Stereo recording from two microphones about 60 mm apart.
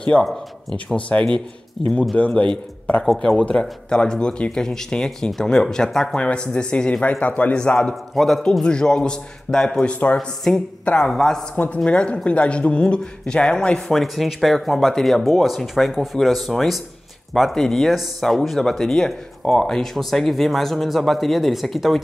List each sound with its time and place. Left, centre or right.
0.2 s speech: centre
0.9 s speech: left
3.0 s speech: centre
3.3 s speech: centre
7.5 s speech: centre
7.9 s speech: centre
8.6 s speech: centre
11.5 s speech: left; by 22.0 s centre